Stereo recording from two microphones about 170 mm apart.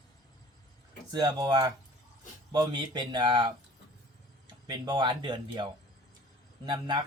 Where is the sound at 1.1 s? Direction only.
25° right (ahead or behind).